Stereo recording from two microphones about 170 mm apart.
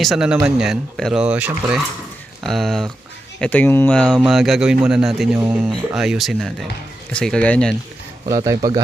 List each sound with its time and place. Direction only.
0.0 s speech: centre (ahead or behind)
4.2 s speech: centre (ahead or behind)
8.3 s a man's voice: 25° right (ahead or behind)